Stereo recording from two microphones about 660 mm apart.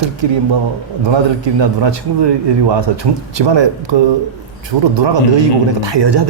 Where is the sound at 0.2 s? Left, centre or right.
Right.